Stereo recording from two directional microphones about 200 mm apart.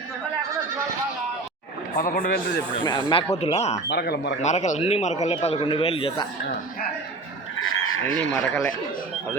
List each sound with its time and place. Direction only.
2.0 s a man's voice: 45° left (ahead or behind)
2.7 s a man's voice: 20° left (ahead or behind)
3.8 s speech: 55° left (ahead or behind)
4.4 s a man's voice: 35° left (ahead or behind)
7.6 s a sound: 90° left
8.3 s speech: 5° left (ahead or behind)